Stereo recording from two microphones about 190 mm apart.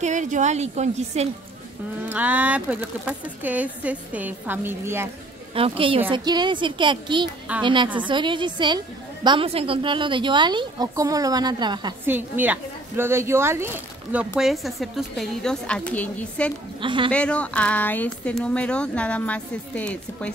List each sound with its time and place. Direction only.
0.0 s a woman's voice: 40° right (ahead or behind)
2.0 s speech: 10° right (ahead or behind)
5.5 s a woman's voice: 30° right (ahead or behind)
12.1 s a woman's voice: 10° right (ahead or behind); by 16.5 s 5° left (ahead or behind)
16.8 s a woman's voice: 25° right (ahead or behind)
17.1 s speech: 5° left (ahead or behind)